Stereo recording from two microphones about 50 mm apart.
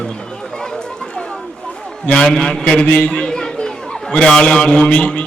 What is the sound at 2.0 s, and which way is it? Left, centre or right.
A man's voice, centre.